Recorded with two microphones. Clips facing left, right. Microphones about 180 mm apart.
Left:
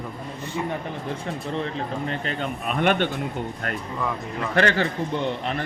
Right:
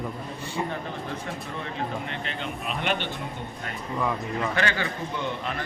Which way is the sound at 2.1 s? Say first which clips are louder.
Left 5 dB; 45° left (ahead or behind).